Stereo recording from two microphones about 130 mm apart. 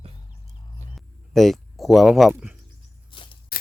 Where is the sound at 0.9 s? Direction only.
Centre (ahead or behind).